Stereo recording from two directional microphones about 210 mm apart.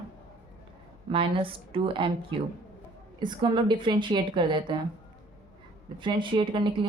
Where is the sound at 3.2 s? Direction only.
20° right (ahead or behind).